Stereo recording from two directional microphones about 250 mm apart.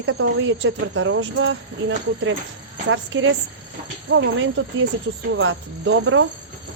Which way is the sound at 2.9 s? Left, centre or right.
Right.